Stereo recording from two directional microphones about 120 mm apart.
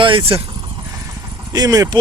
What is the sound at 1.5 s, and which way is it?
Speech, 30° right (ahead or behind).